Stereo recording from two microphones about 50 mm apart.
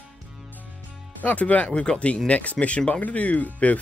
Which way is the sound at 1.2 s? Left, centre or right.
Left.